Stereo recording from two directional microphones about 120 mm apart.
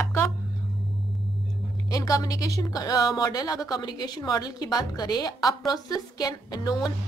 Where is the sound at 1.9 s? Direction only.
30° left (ahead or behind).